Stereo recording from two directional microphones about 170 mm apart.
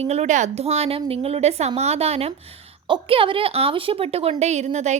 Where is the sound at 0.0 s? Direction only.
40° right (ahead or behind).